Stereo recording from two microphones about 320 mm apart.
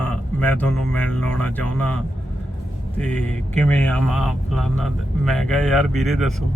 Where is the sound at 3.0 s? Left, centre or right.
Centre.